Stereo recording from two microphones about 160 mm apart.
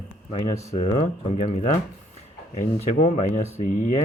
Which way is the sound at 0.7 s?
40° left (ahead or behind).